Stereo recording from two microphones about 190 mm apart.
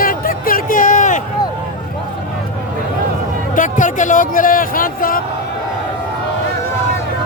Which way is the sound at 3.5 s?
45° left (ahead or behind).